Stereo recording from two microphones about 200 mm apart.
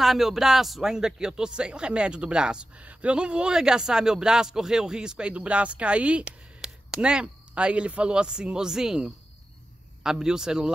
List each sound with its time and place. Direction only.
0.0 s speech: centre (ahead or behind)